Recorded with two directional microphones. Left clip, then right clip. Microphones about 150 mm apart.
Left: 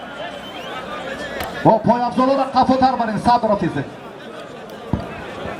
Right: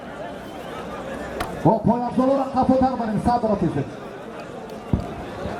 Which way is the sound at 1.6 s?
40° left (ahead or behind).